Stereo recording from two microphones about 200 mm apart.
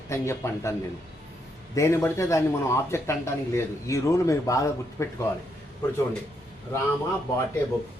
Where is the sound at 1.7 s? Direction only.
15° left (ahead or behind).